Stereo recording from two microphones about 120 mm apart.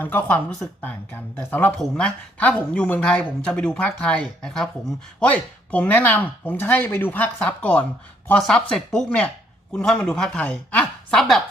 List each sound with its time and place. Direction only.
0.0 s speech: 15° left (ahead or behind)